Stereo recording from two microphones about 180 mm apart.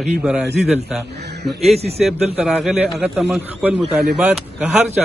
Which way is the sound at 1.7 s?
35° right (ahead or behind).